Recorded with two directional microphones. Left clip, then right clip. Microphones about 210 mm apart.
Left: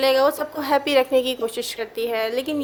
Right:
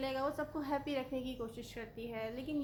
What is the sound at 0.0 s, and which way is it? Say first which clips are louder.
A woman's voice: left 19 dB; 50° left (ahead or behind).